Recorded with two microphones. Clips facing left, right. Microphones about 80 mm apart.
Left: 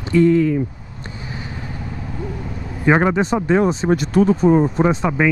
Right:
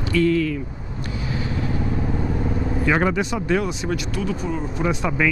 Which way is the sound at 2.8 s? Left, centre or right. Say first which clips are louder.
Left 6 dB; left.